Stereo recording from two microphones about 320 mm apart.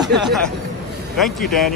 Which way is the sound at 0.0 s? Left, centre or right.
Centre.